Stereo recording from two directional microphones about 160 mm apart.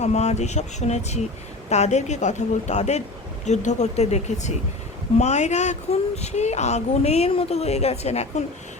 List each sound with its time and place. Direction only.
0.0 s speech: 45° left (ahead or behind)